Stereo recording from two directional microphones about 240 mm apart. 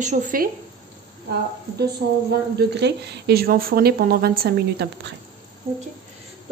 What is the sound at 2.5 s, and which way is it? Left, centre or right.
A woman's voice, right.